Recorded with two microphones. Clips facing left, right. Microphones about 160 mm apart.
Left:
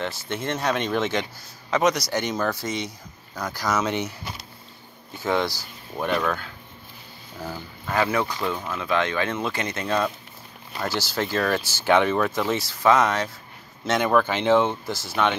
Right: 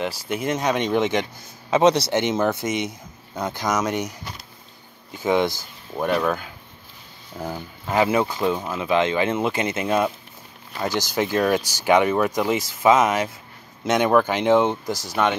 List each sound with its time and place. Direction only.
0.3 s speech: 15° right (ahead or behind)
1.7 s speech: 30° right (ahead or behind); by 4.1 s 10° right (ahead or behind)
5.2 s speech: 20° right (ahead or behind)
6.0 s speech: 10° right (ahead or behind)